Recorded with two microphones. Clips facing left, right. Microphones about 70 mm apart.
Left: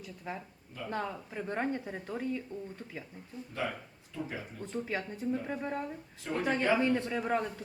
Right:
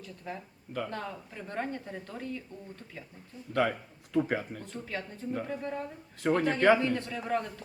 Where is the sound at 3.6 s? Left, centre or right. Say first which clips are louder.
Right 5 dB; right.